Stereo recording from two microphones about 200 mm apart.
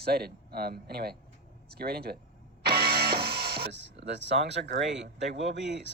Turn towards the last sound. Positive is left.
turn(degrees=-60)  # may be behind; listen again after turning